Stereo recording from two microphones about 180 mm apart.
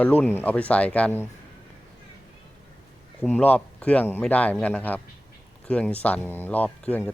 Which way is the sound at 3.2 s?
5° left (ahead or behind).